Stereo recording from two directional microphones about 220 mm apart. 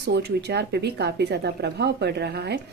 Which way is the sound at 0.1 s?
50° right (ahead or behind).